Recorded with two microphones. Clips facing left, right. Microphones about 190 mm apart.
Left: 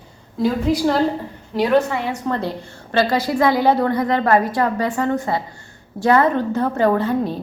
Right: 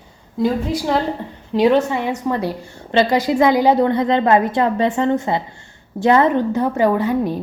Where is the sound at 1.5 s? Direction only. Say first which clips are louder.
Right 2 dB; 20° right (ahead or behind).